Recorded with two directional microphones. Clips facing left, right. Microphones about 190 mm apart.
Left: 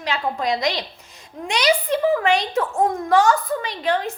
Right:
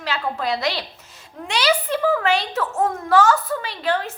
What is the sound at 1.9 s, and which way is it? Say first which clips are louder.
A woman's voice: left 2 dB; 15° left (ahead or behind).